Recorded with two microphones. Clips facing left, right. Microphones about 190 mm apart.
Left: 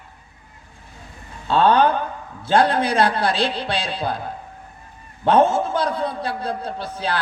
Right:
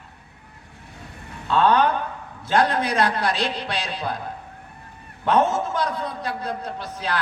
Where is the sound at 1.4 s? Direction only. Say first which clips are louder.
Left 2 dB; 30° left (ahead or behind).